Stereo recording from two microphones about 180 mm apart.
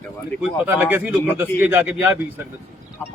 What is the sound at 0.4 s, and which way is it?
A man's voice, 10° right (ahead or behind).